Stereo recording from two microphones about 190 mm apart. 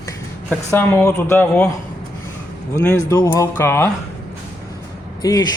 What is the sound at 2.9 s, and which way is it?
Speech, 15° left (ahead or behind).